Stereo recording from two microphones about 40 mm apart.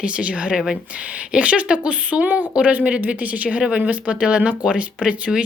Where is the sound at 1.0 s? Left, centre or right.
Right.